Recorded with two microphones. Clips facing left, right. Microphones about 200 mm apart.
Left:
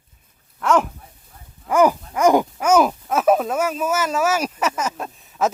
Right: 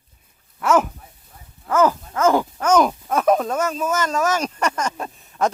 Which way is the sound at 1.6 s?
15° left (ahead or behind).